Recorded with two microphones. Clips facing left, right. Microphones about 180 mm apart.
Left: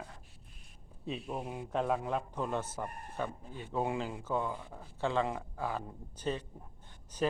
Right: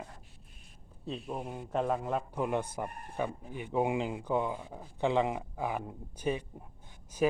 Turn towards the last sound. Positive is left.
turn(degrees=-10)  # may be behind; listen again after turning